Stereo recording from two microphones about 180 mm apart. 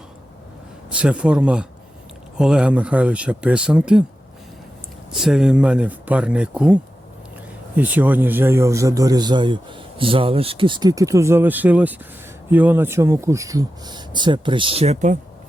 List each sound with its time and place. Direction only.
0.9 s a man's voice: 5° right (ahead or behind)
5.1 s speech: 5° right (ahead or behind)
7.8 s a man's voice: 10° right (ahead or behind); by 15.2 s 40° right (ahead or behind)